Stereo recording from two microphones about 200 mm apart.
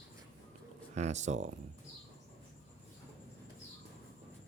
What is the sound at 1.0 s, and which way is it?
Speech, 35° right (ahead or behind).